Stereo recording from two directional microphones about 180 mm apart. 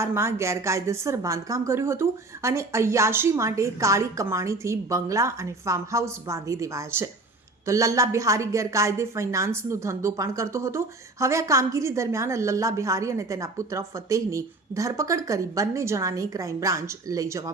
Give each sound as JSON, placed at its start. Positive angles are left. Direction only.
{"t": 0.0, "sound": "a woman's voice", "side_deg": -15}